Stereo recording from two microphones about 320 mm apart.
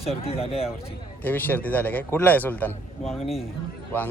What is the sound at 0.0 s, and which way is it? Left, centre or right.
Speech, centre.